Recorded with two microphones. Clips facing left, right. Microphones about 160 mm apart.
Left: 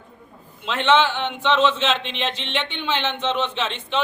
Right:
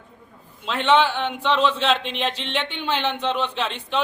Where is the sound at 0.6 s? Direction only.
5° right (ahead or behind).